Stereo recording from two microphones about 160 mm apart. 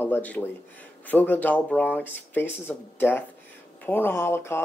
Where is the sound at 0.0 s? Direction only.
10° left (ahead or behind).